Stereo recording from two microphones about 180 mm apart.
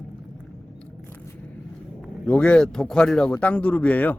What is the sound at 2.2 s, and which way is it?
Speech, 5° left (ahead or behind).